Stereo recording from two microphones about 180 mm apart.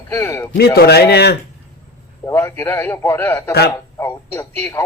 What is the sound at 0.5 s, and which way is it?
Speech, 60° left (ahead or behind).